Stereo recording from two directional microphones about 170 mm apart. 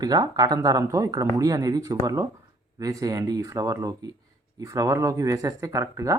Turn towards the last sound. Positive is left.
turn(degrees=-20)  # may be behind; listen again after turning